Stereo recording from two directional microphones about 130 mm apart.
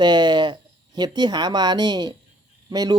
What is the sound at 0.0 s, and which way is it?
Speech, 35° right (ahead or behind).